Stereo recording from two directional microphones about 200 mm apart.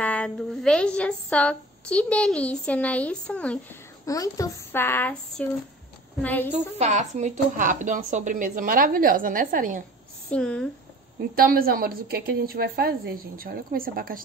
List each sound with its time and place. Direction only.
0.0 s a woman's voice: 5° left (ahead or behind)
4.0 s speech: 15° left (ahead or behind)
6.8 s speech: 35° right (ahead or behind)
10.3 s a woman's voice: 5° left (ahead or behind)
11.3 s a woman's voice: 45° right (ahead or behind)